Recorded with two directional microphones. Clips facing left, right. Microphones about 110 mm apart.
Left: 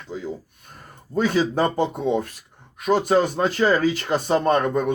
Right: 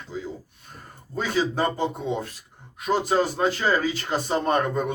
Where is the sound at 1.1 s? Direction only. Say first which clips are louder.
Left 4 dB; 50° left (ahead or behind).